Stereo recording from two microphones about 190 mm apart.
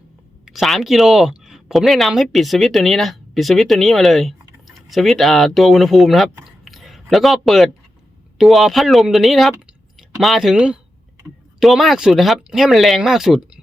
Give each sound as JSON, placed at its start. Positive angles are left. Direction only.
{"t": 0.4, "sound": "speech", "side_deg": 0}
{"t": 6.4, "sound": "a sound", "side_deg": 0}
{"t": 8.4, "sound": "speech", "side_deg": 0}